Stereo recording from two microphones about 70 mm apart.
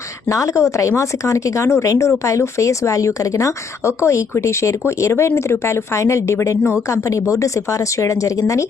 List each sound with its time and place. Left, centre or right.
0.3 s speech: left